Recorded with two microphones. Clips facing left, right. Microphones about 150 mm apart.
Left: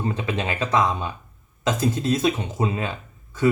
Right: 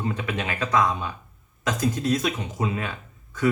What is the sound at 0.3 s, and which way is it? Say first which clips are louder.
Speech: left 2 dB; 25° left (ahead or behind).